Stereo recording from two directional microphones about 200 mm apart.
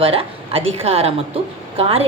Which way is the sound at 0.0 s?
30° right (ahead or behind).